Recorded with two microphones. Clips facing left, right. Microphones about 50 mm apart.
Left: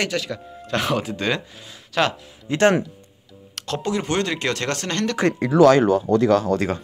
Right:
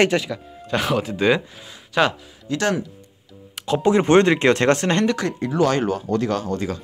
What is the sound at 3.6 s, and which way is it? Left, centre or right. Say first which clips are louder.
Music: right 5 dB; centre.